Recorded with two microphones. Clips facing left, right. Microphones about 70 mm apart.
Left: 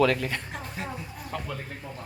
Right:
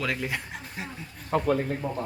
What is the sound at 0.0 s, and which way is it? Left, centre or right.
Speech, centre.